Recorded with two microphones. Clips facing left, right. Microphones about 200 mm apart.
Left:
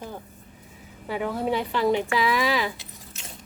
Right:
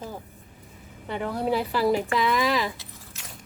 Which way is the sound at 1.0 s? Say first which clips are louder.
Left 1 dB; 5° left (ahead or behind).